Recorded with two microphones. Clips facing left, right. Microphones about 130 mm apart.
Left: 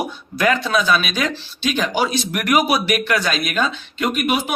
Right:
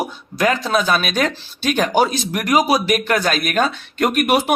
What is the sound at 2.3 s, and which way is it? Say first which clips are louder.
Speech: right 1 dB; 35° right (ahead or behind).